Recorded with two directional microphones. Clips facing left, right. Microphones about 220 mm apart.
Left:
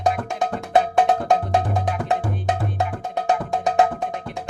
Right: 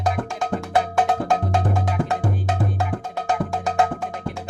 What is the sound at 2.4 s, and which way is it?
Music, 20° left (ahead or behind).